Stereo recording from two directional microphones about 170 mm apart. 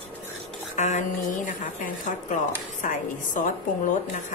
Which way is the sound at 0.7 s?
45° left (ahead or behind).